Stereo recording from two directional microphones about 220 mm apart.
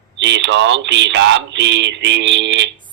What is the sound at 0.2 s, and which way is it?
Speech, 55° right (ahead or behind).